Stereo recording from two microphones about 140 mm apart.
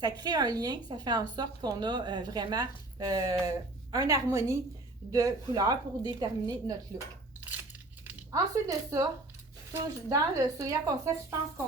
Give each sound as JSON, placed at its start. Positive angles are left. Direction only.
{"t": 0.0, "sound": "a woman's voice", "side_deg": -30}
{"t": 8.3, "sound": "a woman's voice", "side_deg": -25}